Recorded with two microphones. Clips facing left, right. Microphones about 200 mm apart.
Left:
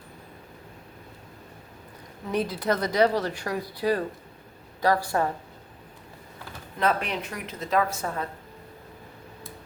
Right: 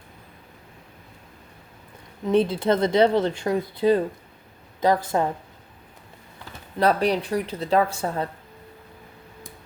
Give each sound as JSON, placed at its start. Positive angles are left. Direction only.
{"t": 2.3, "sound": "speech", "side_deg": -25}
{"t": 6.7, "sound": "a woman's voice", "side_deg": -35}